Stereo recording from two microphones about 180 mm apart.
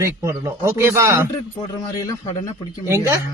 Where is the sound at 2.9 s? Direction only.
15° right (ahead or behind).